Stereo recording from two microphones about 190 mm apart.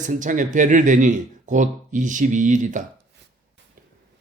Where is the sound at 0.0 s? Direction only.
40° right (ahead or behind).